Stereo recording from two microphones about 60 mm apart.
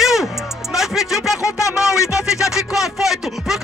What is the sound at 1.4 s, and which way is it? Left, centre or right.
Speech, left.